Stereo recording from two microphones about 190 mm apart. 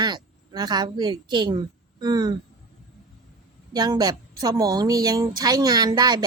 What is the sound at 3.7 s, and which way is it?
A woman's voice, 20° right (ahead or behind).